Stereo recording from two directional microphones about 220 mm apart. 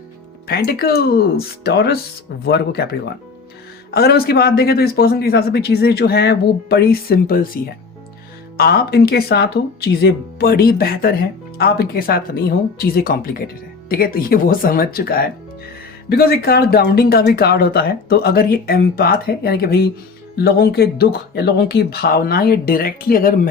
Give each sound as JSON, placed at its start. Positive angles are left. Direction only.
{"t": 0.4, "sound": "speech", "side_deg": 45}
{"t": 3.9, "sound": "speech", "side_deg": 45}